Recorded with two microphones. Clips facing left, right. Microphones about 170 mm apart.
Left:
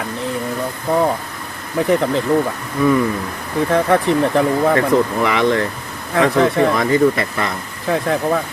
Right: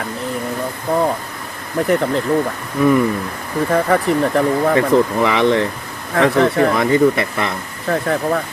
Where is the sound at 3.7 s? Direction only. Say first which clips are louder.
Left 1 dB; centre (ahead or behind).